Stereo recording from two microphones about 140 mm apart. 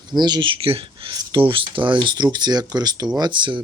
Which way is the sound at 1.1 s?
30° right (ahead or behind).